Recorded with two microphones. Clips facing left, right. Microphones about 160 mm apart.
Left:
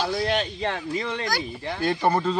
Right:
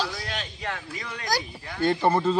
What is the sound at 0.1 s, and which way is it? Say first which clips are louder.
Speech: left 10 dB; 35° left (ahead or behind).